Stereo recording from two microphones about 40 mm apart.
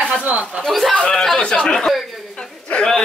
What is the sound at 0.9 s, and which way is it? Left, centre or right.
Speech, centre.